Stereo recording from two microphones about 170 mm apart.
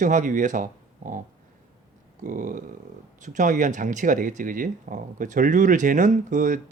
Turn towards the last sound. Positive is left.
turn(degrees=-50)  # may be behind; listen again after turning